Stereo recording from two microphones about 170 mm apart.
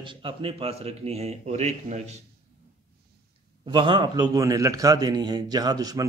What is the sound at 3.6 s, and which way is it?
A man's voice, 30° right (ahead or behind).